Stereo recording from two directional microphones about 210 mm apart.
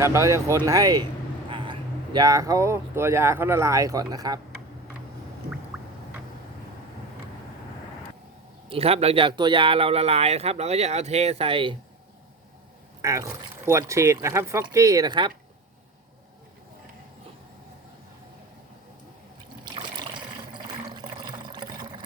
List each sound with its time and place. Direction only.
0.0 s speech: 15° right (ahead or behind)
5.7 s a sound: 5° right (ahead or behind)
8.7 s speech: 30° right (ahead or behind)
13.0 s speech: 15° right (ahead or behind)
19.6 s water: 20° right (ahead or behind)